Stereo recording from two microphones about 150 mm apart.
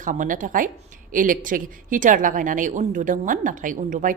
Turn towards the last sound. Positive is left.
turn(degrees=-60)  # may be behind; listen again after turning